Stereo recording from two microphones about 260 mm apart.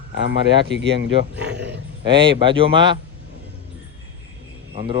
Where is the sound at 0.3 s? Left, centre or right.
Right.